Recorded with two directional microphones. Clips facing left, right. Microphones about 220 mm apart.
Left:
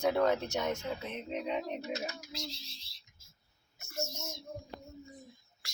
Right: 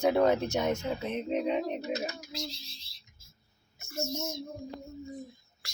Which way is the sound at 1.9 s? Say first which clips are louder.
Right 4 dB; 20° right (ahead or behind).